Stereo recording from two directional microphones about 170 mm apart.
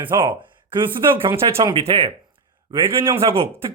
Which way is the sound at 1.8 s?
35° right (ahead or behind).